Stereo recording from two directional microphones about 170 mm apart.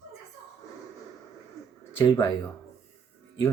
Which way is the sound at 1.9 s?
20° left (ahead or behind).